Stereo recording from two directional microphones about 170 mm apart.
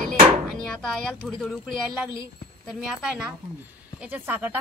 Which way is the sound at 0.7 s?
5° left (ahead or behind).